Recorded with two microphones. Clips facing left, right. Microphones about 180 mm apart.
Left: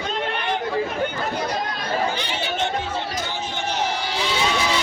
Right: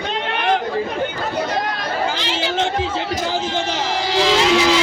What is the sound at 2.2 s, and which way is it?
Chatter, 90° right.